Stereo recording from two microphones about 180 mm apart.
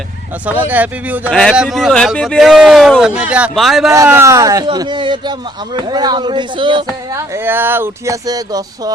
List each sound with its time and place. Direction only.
0.4 s speech: 10° right (ahead or behind)
1.3 s a man's voice: centre (ahead or behind)
3.9 s speech: 15° right (ahead or behind)
7.1 s speech: 15° right (ahead or behind)